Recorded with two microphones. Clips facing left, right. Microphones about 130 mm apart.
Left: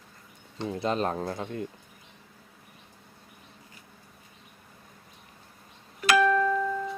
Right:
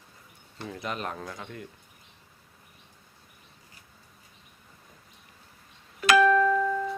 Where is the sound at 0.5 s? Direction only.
25° left (ahead or behind).